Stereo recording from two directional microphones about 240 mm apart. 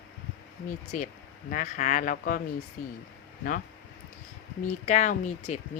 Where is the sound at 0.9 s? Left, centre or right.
Left.